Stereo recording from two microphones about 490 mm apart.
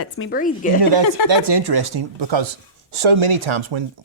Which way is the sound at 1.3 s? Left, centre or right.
Right.